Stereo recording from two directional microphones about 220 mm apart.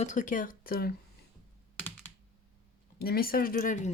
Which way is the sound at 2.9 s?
45° left (ahead or behind).